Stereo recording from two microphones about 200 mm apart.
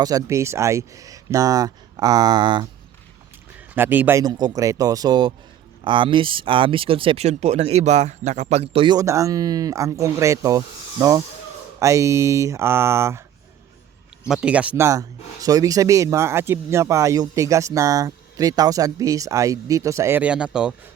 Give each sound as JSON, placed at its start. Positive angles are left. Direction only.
{"t": 0.0, "sound": "speech", "side_deg": -15}
{"t": 3.8, "sound": "speech", "side_deg": -10}
{"t": 14.3, "sound": "speech", "side_deg": -5}